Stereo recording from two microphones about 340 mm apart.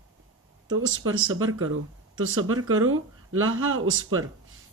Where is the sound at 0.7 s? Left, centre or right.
Right.